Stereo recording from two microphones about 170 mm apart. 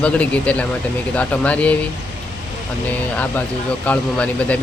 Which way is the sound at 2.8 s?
10° left (ahead or behind).